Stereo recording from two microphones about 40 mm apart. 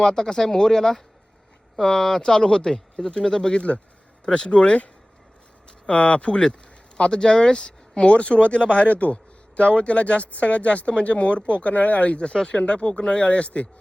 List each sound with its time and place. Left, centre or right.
0.0 s speech: centre; by 13.7 s left